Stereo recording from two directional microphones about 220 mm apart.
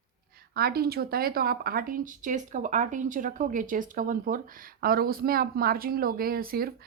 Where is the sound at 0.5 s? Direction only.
45° right (ahead or behind).